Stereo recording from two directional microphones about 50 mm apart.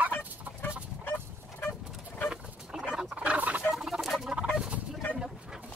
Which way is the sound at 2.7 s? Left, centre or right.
Centre.